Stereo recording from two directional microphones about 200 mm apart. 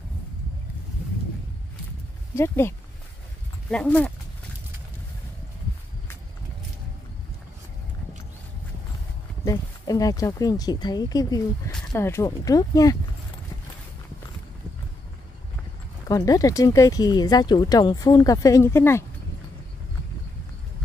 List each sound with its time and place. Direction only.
2.3 s speech: 10° left (ahead or behind)
3.7 s speech: 5° left (ahead or behind)
9.4 s speech: 15° left (ahead or behind)
16.1 s speech: 15° left (ahead or behind)